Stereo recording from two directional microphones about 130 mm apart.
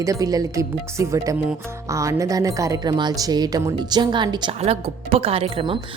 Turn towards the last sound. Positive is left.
turn(degrees=-45)  # may be behind; listen again after turning